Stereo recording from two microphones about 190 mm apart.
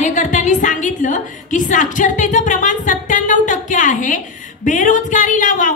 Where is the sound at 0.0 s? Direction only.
40° left (ahead or behind).